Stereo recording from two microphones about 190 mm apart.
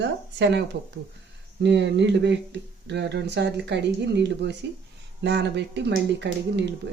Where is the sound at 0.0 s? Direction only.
65° right (ahead or behind).